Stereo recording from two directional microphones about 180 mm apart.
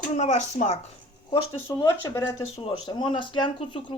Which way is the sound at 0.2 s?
40° left (ahead or behind).